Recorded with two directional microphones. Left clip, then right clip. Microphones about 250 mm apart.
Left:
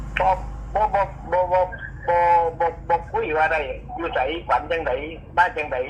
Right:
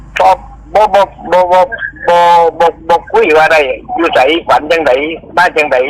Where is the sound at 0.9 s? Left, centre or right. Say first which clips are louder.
Right 13 dB; right.